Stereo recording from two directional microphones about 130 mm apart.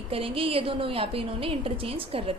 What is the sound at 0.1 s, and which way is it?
A woman's voice, 45° right (ahead or behind).